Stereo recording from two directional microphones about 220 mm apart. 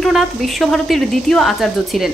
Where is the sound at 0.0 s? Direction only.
Centre (ahead or behind).